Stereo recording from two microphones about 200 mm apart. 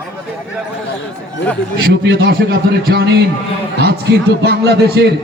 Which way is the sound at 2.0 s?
50° right (ahead or behind).